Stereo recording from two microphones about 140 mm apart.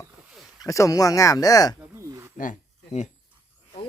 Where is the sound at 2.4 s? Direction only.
65° left (ahead or behind).